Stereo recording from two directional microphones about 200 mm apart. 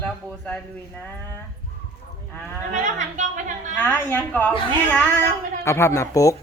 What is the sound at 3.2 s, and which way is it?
Speech, 40° right (ahead or behind).